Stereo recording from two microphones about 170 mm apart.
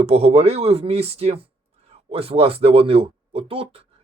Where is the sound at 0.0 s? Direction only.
35° right (ahead or behind).